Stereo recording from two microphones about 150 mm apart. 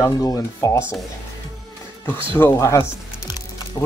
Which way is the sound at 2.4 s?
20° left (ahead or behind).